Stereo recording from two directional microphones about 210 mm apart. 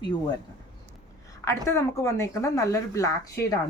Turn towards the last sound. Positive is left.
turn(degrees=15)  # may be behind; listen again after turning